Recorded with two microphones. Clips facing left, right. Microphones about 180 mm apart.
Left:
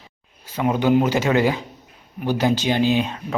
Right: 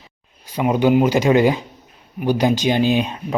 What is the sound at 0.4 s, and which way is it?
Speech, 15° right (ahead or behind).